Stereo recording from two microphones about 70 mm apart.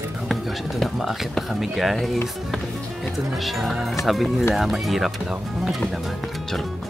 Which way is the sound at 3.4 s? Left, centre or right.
Centre.